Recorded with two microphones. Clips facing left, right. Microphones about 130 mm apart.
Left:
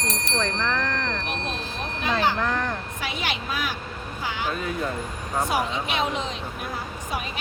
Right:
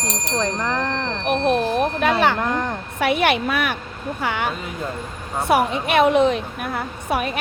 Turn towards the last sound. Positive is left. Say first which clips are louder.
# right 8 dB
turn(degrees=-65)  # may be behind; listen again after turning